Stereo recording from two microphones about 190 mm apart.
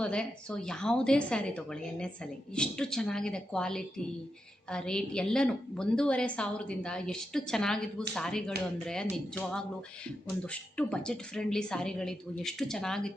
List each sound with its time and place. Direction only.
0.0 s a woman's voice: 5° left (ahead or behind)